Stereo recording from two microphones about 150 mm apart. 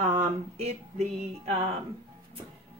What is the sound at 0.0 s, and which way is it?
Music, 45° right (ahead or behind).